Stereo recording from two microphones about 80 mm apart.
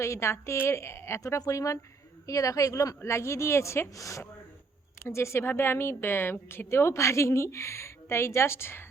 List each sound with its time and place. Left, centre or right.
0.0 s a woman's voice: left